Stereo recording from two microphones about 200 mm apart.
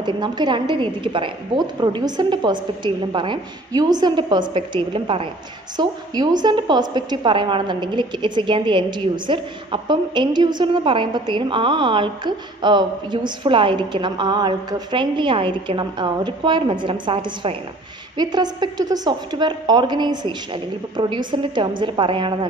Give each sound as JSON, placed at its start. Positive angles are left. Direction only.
{"t": 0.0, "sound": "a woman's voice", "side_deg": -20}